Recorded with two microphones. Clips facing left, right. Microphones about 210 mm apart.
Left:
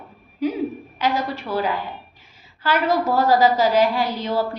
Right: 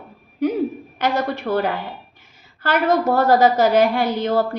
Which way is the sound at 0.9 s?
60° right (ahead or behind).